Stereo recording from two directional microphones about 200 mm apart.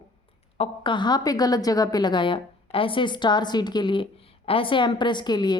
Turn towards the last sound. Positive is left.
turn(degrees=20)  # may be behind; listen again after turning